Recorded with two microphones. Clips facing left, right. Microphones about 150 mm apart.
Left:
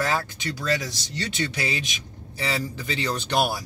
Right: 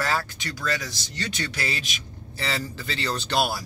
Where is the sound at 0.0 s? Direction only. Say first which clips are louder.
Left 1 dB; 20° left (ahead or behind).